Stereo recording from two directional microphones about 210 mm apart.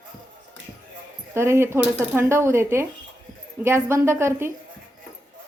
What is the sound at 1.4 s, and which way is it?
A woman's voice, 10° right (ahead or behind).